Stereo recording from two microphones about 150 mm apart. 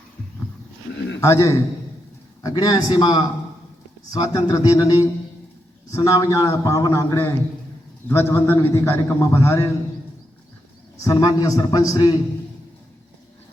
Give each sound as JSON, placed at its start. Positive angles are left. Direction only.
{"t": 1.2, "sound": "a man's voice", "side_deg": 20}
{"t": 10.9, "sound": "a man's voice", "side_deg": 25}